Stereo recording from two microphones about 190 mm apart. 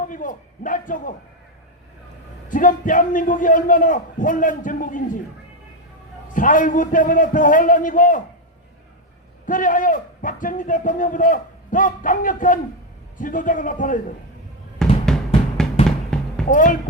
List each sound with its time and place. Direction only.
0.0 s a man's voice: 45° left (ahead or behind)
2.5 s a man's voice: 45° left (ahead or behind)
6.3 s a man's voice: 45° left (ahead or behind)
9.5 s a man's voice: 45° left (ahead or behind)
14.8 s drum: 5° left (ahead or behind)
16.1 s music: 5° left (ahead or behind)
16.5 s a man's voice: 45° left (ahead or behind)